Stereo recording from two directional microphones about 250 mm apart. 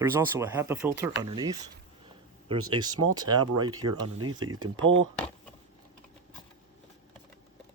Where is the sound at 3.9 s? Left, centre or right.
Right.